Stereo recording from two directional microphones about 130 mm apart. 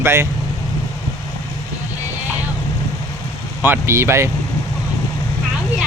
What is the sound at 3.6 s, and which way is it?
Speech, 20° right (ahead or behind).